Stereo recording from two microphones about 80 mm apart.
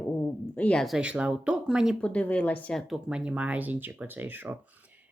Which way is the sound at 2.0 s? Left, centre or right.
Centre.